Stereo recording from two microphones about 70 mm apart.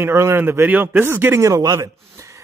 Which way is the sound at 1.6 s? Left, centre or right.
Right.